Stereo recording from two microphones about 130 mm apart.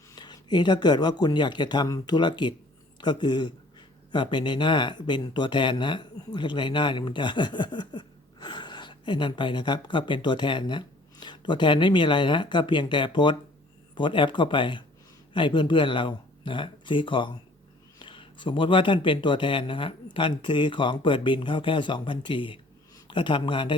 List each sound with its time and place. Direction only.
0.2 s speech: 35° left (ahead or behind)